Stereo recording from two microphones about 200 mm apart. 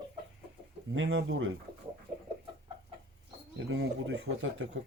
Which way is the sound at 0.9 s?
65° right (ahead or behind).